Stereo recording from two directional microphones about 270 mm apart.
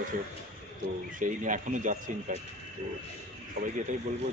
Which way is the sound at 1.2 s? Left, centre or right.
Right.